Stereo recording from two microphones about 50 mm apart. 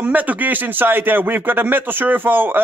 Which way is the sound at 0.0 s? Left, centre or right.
Right.